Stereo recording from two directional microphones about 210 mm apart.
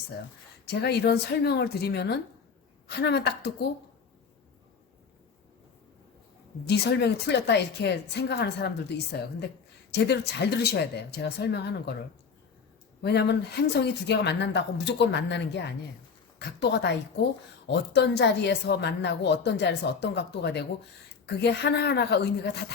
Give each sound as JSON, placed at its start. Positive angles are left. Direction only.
{"t": 0.7, "sound": "a woman's voice", "side_deg": 50}
{"t": 6.7, "sound": "a woman's voice", "side_deg": 50}
{"t": 13.0, "sound": "a woman's voice", "side_deg": 50}